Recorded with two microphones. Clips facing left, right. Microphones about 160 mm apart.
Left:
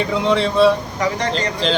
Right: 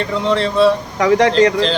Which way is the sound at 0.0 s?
5° left (ahead or behind).